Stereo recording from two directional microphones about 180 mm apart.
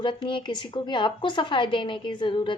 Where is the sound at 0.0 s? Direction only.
25° left (ahead or behind).